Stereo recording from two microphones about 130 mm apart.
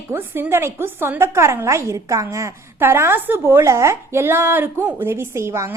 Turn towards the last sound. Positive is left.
turn(degrees=-20)  # may be behind; listen again after turning